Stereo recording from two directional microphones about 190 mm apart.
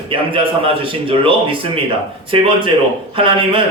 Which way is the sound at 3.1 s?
30° right (ahead or behind).